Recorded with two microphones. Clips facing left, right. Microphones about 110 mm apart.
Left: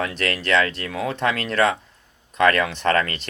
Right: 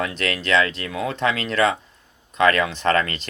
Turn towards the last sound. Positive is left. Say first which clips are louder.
# even
turn(degrees=60)  # may be behind; listen again after turning